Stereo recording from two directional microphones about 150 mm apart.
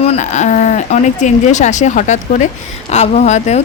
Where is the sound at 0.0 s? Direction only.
45° left (ahead or behind).